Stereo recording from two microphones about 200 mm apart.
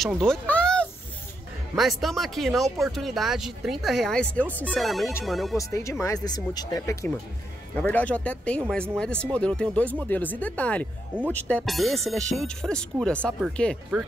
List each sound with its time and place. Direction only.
0.0 s a sound: 5° left (ahead or behind)
1.8 s speech: centre (ahead or behind)
5.6 s speech: 15° left (ahead or behind)